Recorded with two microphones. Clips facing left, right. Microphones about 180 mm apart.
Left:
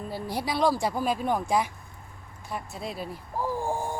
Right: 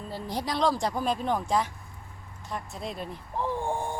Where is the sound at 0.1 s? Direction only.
10° left (ahead or behind).